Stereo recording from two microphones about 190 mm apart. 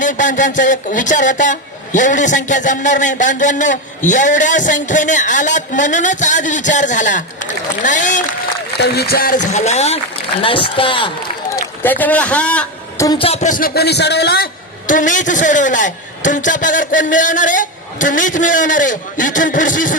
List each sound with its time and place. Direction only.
0.0 s speech: 40° left (ahead or behind)
8.8 s speech: 55° left (ahead or behind); by 11.1 s 25° left (ahead or behind)
11.5 s a man's voice: 10° left (ahead or behind)
13.1 s a man's voice: 30° left (ahead or behind); by 20.0 s 45° left (ahead or behind)